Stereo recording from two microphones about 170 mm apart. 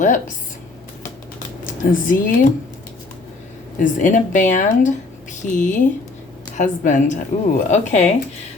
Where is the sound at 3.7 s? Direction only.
50° left (ahead or behind).